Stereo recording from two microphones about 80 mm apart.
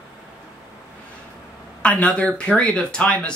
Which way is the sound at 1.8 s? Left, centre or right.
Centre.